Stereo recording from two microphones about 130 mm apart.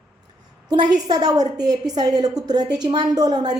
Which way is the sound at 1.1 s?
30° right (ahead or behind).